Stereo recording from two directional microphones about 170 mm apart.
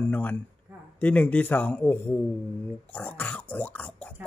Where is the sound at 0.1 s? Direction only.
10° left (ahead or behind).